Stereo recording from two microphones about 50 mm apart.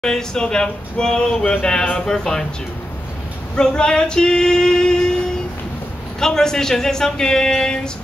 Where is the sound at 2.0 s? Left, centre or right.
Centre.